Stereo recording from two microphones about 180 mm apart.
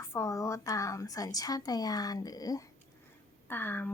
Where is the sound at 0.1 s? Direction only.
15° left (ahead or behind).